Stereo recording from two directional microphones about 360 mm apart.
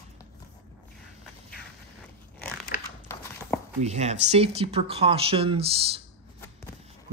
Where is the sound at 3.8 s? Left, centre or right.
Centre.